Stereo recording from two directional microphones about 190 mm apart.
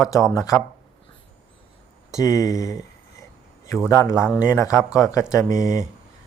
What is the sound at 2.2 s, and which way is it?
Speech, 15° left (ahead or behind).